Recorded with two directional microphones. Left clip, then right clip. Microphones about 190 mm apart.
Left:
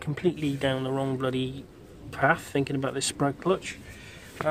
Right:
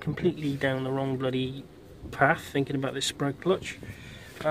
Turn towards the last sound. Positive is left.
turn(degrees=0)  # may be behind; listen again after turning